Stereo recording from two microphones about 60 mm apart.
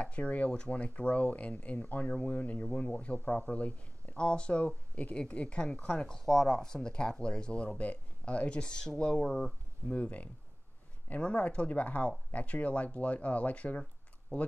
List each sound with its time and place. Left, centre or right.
0.0 s speech: left; by 9.9 s centre
9.9 s speech: left